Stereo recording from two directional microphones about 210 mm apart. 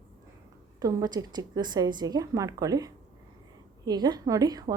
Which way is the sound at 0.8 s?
15° right (ahead or behind).